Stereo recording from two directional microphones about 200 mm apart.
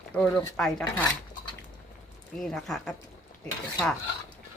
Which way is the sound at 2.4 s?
Centre (ahead or behind).